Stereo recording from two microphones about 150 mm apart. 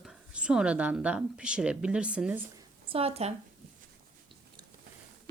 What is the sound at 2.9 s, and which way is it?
Speech, 40° right (ahead or behind).